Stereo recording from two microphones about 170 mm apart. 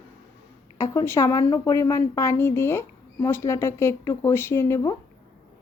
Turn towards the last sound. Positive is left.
turn(degrees=15)  # may be behind; listen again after turning